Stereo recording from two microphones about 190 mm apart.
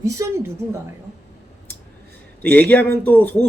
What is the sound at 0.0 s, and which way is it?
Speech, 15° right (ahead or behind).